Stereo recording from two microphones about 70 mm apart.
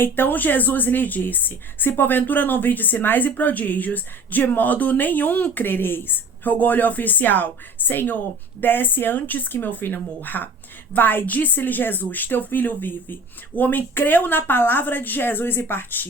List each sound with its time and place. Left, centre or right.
0.0 s speech: left